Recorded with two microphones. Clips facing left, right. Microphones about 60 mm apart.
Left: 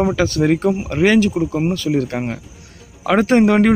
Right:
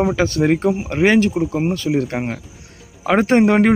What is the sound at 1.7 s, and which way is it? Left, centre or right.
Speech, right.